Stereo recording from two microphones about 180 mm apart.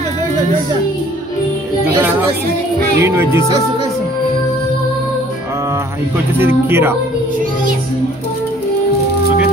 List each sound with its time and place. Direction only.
3.0 s speech: 15° right (ahead or behind)
6.3 s speech: 10° right (ahead or behind)